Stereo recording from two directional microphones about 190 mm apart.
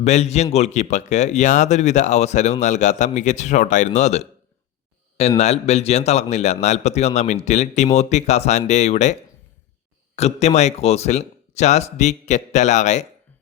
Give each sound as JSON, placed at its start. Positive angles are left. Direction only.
{"t": 0.0, "sound": "speech", "side_deg": 35}
{"t": 5.4, "sound": "speech", "side_deg": 35}
{"t": 10.2, "sound": "speech", "side_deg": 35}